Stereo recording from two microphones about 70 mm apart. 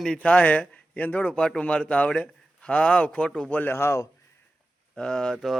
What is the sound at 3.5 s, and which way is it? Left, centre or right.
Speech, left.